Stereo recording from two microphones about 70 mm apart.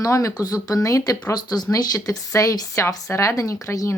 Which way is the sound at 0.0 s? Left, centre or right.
Left.